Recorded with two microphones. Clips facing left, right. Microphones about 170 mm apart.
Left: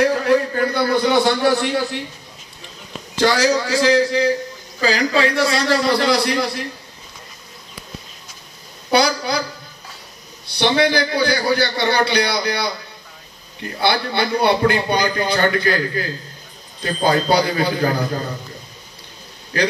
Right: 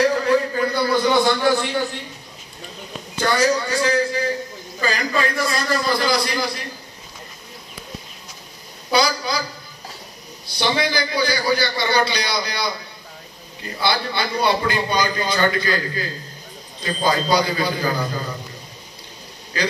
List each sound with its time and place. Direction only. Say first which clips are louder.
0.2 s a sound: left 2 dB; 65° left (ahead or behind)
3.2 s a man's voice: left 3 dB; 85° left; by 6.5 s 65° left (ahead or behind)
8.9 s a man's voice: left 3 dB; 60° left (ahead or behind)
10.4 s a man's voice: left 5 dB; 60° left (ahead or behind)